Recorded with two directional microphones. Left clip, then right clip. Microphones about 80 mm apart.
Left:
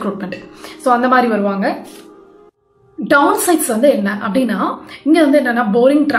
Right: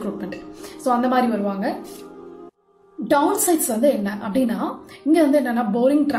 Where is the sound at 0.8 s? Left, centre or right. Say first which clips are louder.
Left 7 dB; right.